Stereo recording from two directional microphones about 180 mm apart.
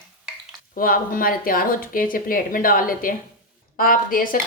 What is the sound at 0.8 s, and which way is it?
Speech, 50° left (ahead or behind).